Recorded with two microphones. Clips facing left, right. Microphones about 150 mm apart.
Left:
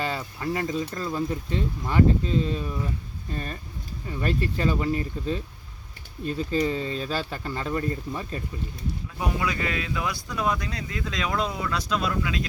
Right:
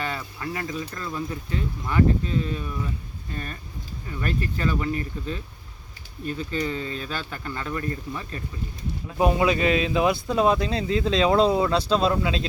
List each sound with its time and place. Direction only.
0.0 s a sound: 30° left (ahead or behind)
1.9 s speech: 30° left (ahead or behind)
6.5 s speech: 35° left (ahead or behind)
9.1 s speech: 25° right (ahead or behind)